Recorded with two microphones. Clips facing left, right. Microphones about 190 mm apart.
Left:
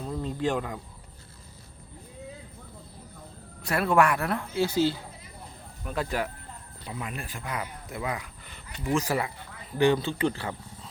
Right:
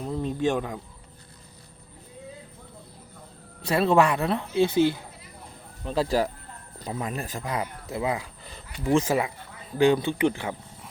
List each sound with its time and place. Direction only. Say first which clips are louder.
0.0 s a sound: right 3 dB; 20° right (ahead or behind)
3.7 s speech: right 3 dB; 25° right (ahead or behind)
5.8 s speech: right 6 dB; 30° right (ahead or behind)